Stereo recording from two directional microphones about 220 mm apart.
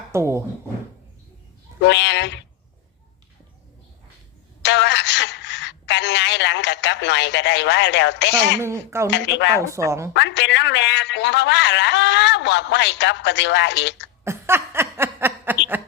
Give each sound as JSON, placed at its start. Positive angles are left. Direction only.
{"t": 0.1, "sound": "speech", "side_deg": -10}
{"t": 1.8, "sound": "a man's voice", "side_deg": 55}
{"t": 4.6, "sound": "a woman's voice", "side_deg": 55}
{"t": 8.6, "sound": "speech", "side_deg": -10}
{"t": 9.0, "sound": "a man's voice", "side_deg": 50}
{"t": 9.6, "sound": "speech", "side_deg": -15}
{"t": 10.2, "sound": "a man's voice", "side_deg": 50}
{"t": 14.3, "sound": "chuckle", "side_deg": -10}